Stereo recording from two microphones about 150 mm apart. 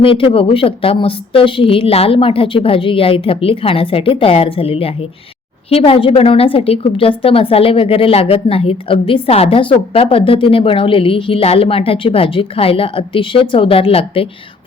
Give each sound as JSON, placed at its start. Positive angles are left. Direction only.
{"t": 0.0, "sound": "a woman's voice", "side_deg": 35}